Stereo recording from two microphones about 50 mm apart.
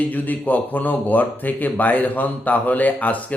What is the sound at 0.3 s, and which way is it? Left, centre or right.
Speech, left.